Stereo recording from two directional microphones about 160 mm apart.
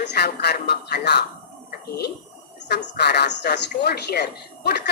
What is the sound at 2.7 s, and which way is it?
Speech, 90° left.